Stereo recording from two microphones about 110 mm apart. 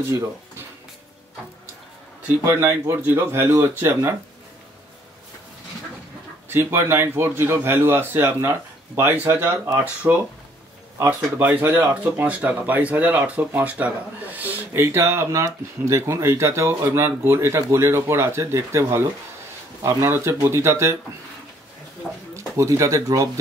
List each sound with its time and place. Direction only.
2.4 s speech: 20° right (ahead or behind)
6.5 s speech: 20° right (ahead or behind)
22.3 s speech: 30° right (ahead or behind)